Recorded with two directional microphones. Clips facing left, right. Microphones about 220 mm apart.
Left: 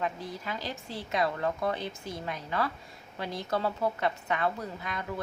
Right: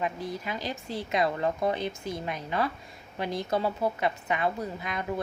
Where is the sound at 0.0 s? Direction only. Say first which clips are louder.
Right 2 dB; 15° right (ahead or behind).